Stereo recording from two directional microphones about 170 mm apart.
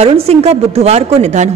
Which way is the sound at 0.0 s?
40° right (ahead or behind).